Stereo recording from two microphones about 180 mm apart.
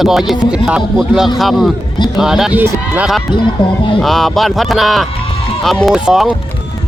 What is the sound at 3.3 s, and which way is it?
Speech, 25° left (ahead or behind).